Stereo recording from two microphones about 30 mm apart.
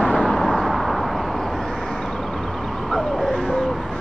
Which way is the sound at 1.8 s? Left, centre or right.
Centre.